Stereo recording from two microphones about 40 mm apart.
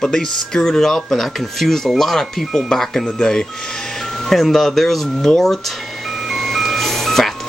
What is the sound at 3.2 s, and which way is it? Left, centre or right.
Speech, centre.